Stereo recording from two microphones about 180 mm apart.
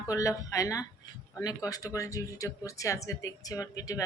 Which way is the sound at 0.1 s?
20° left (ahead or behind).